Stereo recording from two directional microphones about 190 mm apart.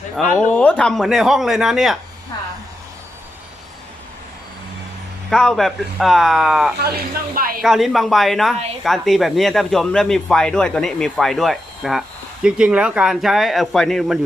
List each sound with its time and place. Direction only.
0.2 s speech: 5° left (ahead or behind)
5.3 s speech: 5° left (ahead or behind)
6.7 s speech: 55° right (ahead or behind)
7.6 s speech: centre (ahead or behind)